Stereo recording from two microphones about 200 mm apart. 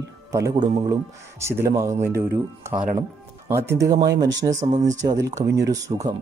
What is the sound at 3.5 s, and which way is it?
Speech, 15° right (ahead or behind).